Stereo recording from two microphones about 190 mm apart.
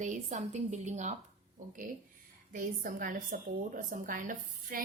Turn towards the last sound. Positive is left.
turn(degrees=-45)  # may be behind; listen again after turning